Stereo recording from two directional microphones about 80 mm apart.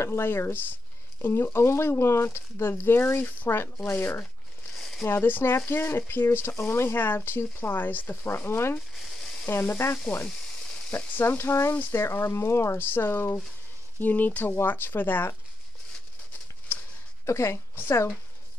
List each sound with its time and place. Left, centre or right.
0.0 s speech: left
4.7 s a sound: centre
5.0 s speech: left
8.9 s a sound: centre
9.5 s speech: left
17.3 s speech: left